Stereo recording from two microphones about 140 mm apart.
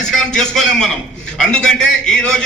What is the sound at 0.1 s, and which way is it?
A man's voice, 5° left (ahead or behind).